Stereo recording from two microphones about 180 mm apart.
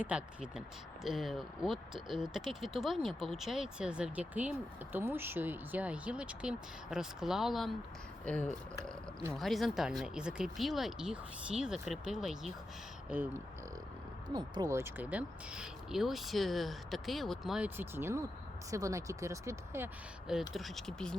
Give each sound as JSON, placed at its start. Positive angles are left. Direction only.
{"t": 0.0, "sound": "speech", "side_deg": -5}
{"t": 14.3, "sound": "speech", "side_deg": -25}
{"t": 20.5, "sound": "speech", "side_deg": 0}